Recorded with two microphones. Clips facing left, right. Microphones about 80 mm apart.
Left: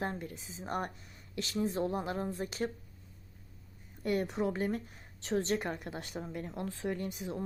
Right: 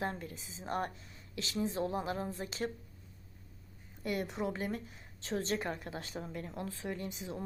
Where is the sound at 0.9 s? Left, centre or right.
Left.